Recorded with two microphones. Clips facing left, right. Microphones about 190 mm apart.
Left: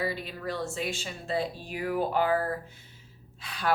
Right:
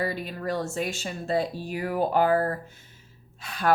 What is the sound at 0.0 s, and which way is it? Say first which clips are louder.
Speech: right 3 dB; 45° right (ahead or behind).